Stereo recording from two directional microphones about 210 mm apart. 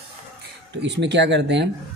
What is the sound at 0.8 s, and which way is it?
Speech, 55° right (ahead or behind).